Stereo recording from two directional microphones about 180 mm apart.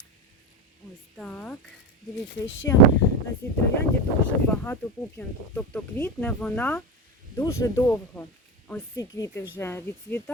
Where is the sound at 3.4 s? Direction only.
10° left (ahead or behind).